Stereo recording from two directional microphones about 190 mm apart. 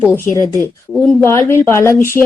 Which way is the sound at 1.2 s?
15° left (ahead or behind).